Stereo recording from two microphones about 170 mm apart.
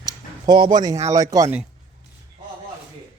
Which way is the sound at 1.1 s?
20° right (ahead or behind).